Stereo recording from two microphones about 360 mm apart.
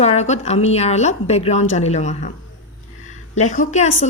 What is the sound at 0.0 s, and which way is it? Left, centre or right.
A woman's voice, centre.